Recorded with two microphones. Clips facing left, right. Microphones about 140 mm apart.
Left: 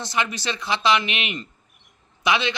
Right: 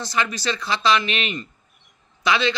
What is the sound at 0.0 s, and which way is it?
Speech, 20° left (ahead or behind).